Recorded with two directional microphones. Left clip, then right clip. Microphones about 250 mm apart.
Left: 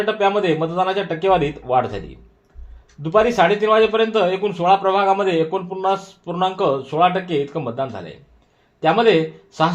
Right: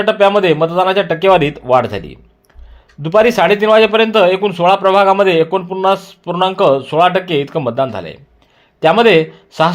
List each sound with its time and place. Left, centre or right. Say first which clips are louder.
0.0 s a man's voice: right 7 dB; right